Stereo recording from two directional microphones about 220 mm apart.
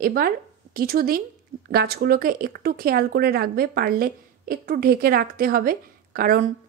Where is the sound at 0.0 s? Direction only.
40° right (ahead or behind).